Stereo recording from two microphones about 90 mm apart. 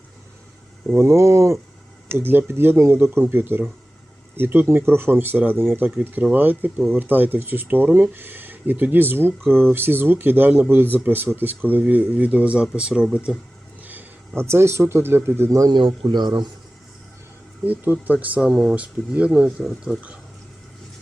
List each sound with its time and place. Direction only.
0.9 s a sound: 30° right (ahead or behind)
2.0 s speech: 25° right (ahead or behind); by 13.3 s 10° right (ahead or behind)
13.8 s a sound: 20° right (ahead or behind)
14.4 s speech: 30° right (ahead or behind)
16.0 s speech: 55° right (ahead or behind)
18.0 s speech: 20° right (ahead or behind)